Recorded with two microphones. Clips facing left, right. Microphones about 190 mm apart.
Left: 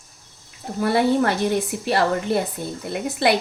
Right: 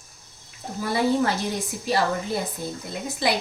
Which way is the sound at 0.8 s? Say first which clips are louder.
Left 4 dB; 65° left (ahead or behind).